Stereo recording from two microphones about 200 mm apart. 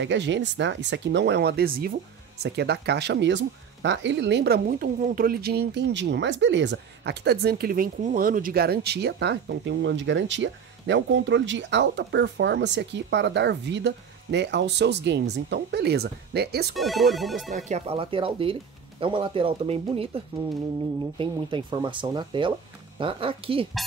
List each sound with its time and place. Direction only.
0.0 s speech: 65° right (ahead or behind)
16.7 s speech: centre (ahead or behind)
17.6 s speech: 30° right (ahead or behind)
21.2 s speech: 25° right (ahead or behind)